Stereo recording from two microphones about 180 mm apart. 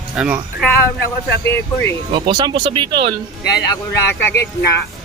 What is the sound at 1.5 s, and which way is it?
Speech, 10° left (ahead or behind).